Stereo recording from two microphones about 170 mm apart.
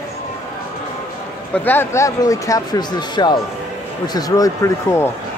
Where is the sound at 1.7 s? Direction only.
15° left (ahead or behind).